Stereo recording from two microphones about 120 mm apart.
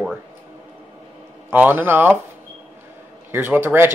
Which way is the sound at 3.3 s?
20° right (ahead or behind).